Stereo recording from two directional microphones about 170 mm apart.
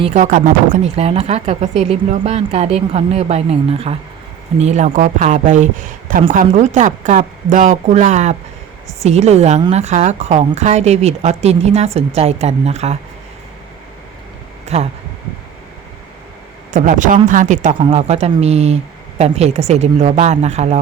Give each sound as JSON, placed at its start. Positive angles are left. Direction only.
{"t": 0.0, "sound": "a man's voice", "side_deg": -45}
{"t": 0.9, "sound": "a man's voice", "side_deg": -35}
{"t": 14.6, "sound": "a sound", "side_deg": -40}
{"t": 16.7, "sound": "a man's voice", "side_deg": -50}
{"t": 17.7, "sound": "speech", "side_deg": -35}